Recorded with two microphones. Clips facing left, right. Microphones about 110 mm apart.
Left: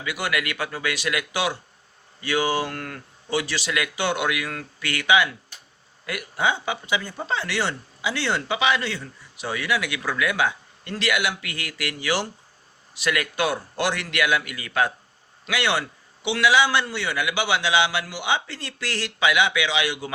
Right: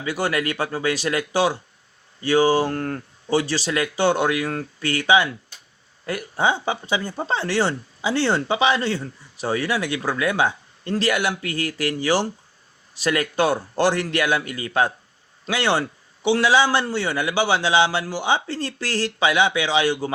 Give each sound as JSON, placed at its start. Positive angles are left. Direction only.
{"t": 0.0, "sound": "speech", "side_deg": -35}